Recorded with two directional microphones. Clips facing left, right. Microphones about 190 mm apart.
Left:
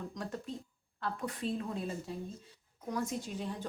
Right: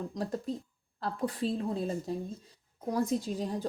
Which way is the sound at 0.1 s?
35° right (ahead or behind).